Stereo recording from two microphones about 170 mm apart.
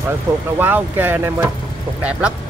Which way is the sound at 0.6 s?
10° right (ahead or behind).